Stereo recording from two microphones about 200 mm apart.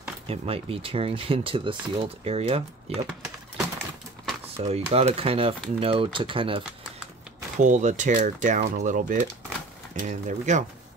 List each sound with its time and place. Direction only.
0.3 s speech: 30° right (ahead or behind)
4.6 s speech: 30° right (ahead or behind)
7.5 s speech: 40° right (ahead or behind)